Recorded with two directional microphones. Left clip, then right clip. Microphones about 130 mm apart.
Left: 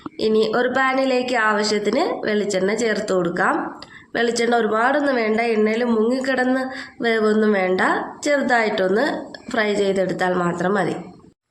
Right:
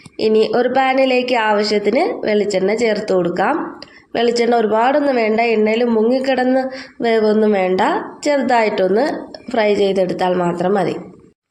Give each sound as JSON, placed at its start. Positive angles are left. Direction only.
{"t": 0.2, "sound": "a woman's voice", "side_deg": -25}